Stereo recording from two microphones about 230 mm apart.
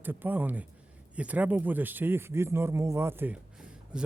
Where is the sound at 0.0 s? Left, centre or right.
Centre.